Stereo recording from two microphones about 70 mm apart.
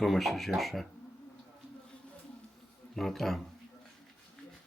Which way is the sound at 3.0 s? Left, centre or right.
Centre.